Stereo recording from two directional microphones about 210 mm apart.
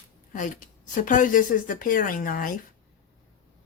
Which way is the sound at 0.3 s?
40° left (ahead or behind).